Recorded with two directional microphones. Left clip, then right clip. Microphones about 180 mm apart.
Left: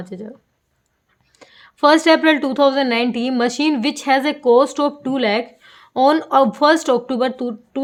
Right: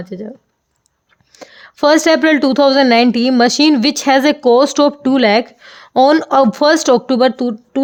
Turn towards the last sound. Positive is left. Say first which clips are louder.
# right 6 dB
turn(degrees=-40)  # may be behind; listen again after turning